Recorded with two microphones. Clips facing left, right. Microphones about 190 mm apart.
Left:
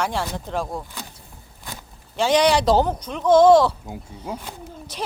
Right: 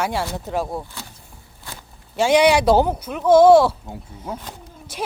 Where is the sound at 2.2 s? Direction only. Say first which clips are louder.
Right 3 dB; 10° right (ahead or behind).